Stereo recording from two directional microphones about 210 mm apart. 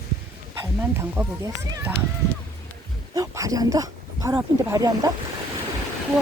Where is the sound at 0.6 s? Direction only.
10° right (ahead or behind).